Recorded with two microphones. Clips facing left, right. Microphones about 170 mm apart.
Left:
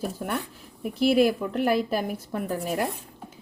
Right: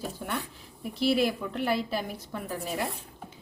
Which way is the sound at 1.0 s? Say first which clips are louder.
Left 5 dB; 50° left (ahead or behind).